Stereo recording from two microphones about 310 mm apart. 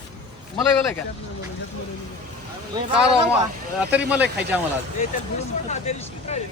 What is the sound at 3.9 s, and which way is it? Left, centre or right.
Speech, centre.